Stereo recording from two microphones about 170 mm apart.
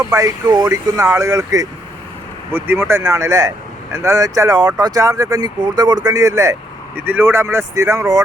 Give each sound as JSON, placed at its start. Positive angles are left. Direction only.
{"t": 0.0, "sound": "speech", "side_deg": -20}